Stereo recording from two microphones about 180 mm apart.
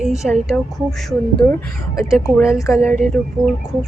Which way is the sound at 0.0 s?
Centre (ahead or behind).